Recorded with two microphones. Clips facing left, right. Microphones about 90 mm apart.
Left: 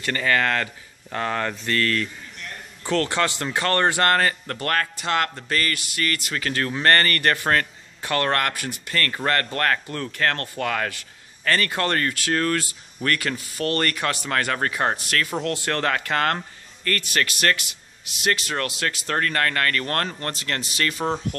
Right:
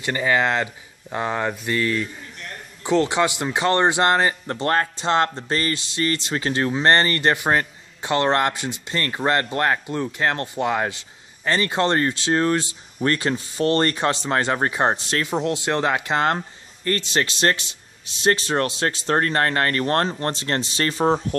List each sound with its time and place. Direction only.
0.0 s speech: 15° right (ahead or behind); by 21.4 s 30° right (ahead or behind)